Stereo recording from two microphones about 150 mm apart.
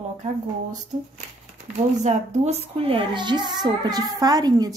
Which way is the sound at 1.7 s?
50° right (ahead or behind).